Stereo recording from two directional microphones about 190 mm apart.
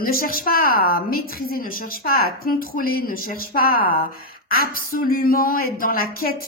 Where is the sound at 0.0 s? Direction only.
50° left (ahead or behind).